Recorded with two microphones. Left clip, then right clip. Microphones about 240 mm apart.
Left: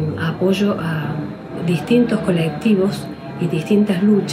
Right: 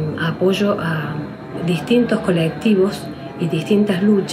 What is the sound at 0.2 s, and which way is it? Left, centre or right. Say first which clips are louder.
Speech: right 1 dB; centre.